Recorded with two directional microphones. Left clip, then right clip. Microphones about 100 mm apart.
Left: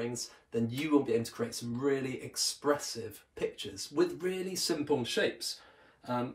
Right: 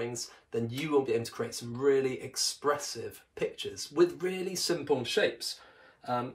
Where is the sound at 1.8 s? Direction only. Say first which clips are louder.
Right 6 dB; 20° right (ahead or behind).